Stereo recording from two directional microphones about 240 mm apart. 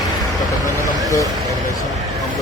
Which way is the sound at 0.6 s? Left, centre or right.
Centre.